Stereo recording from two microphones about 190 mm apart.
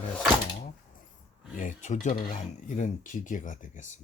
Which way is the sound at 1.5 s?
40° left (ahead or behind).